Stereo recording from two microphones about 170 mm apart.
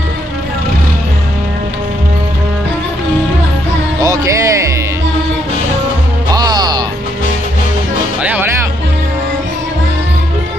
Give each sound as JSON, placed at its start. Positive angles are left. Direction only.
{"t": 4.0, "sound": "music", "side_deg": -20}
{"t": 6.3, "sound": "music", "side_deg": -25}
{"t": 8.2, "sound": "music", "side_deg": -10}